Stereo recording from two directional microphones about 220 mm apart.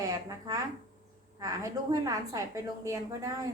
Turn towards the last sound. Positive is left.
turn(degrees=-15)  # may be behind; listen again after turning